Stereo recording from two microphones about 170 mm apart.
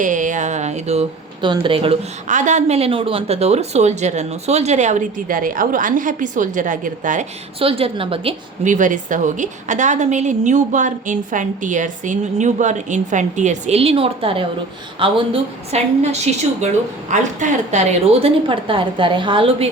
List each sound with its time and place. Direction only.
0.0 s a woman's voice: 50° right (ahead or behind); by 2.0 s 30° right (ahead or behind)
2.2 s a woman's voice: 45° right (ahead or behind)
7.6 s a woman's voice: 30° right (ahead or behind)
8.6 s a woman's voice: 50° right (ahead or behind)